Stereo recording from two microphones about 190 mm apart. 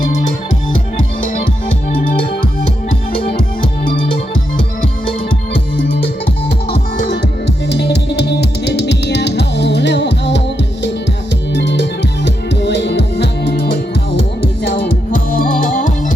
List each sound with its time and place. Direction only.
7.0 s music: 60° left (ahead or behind)
11.5 s music: 65° left (ahead or behind)
14.7 s music: 50° left (ahead or behind)